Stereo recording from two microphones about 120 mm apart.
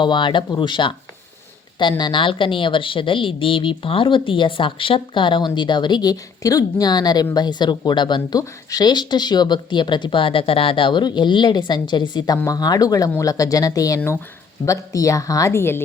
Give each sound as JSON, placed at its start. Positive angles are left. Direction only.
{"t": 0.0, "sound": "a woman's voice", "side_deg": 40}